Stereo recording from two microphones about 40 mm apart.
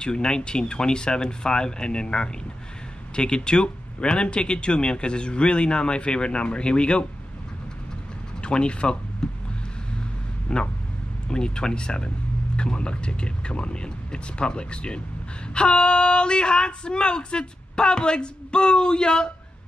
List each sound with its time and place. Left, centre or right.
0.0 s speech: left
8.4 s speech: left
9.2 s a sound: centre
10.5 s speech: left